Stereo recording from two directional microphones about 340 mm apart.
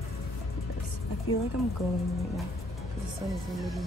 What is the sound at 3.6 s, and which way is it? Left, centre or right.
Speech, centre.